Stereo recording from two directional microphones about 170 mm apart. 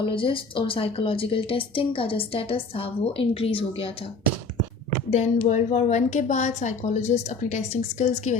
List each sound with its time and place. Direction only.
0.0 s a woman's voice: 30° left (ahead or behind)
5.1 s a woman's voice: 40° left (ahead or behind)